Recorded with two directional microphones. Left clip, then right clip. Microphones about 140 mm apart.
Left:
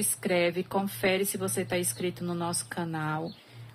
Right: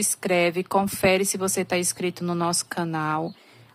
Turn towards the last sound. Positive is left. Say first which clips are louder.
# right 7 dB
turn(degrees=-50)  # may be behind; listen again after turning